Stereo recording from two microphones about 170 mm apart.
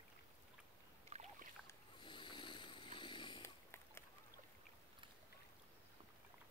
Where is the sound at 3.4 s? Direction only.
15° left (ahead or behind).